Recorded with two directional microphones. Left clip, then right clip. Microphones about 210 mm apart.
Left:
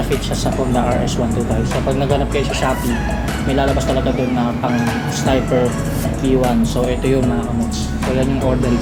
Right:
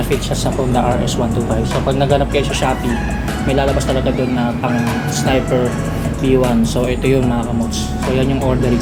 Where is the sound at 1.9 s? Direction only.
10° right (ahead or behind).